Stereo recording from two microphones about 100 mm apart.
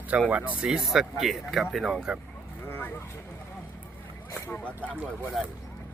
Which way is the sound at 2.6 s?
25° left (ahead or behind).